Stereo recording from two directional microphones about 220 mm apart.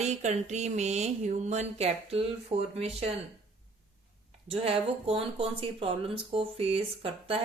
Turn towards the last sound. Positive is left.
turn(degrees=-25)  # may be behind; listen again after turning